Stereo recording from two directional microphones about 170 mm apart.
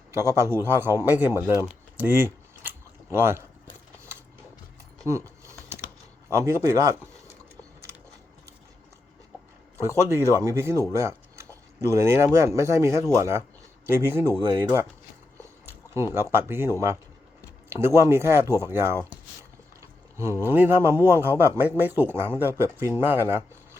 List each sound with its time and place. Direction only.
0.1 s speech: 15° right (ahead or behind)
1.4 s typing: 10° right (ahead or behind)
5.0 s a sound: 15° right (ahead or behind)
6.3 s speech: 15° right (ahead or behind)
9.8 s speech: 15° right (ahead or behind)
10.9 s a sound: 15° right (ahead or behind)
11.9 s speech: 15° right (ahead or behind)
16.5 s speech: 15° right (ahead or behind)
19.8 s a sound: 15° right (ahead or behind)
20.4 s speech: 15° right (ahead or behind)